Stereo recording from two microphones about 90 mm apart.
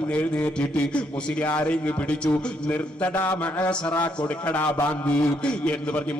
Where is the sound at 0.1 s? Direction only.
15° left (ahead or behind).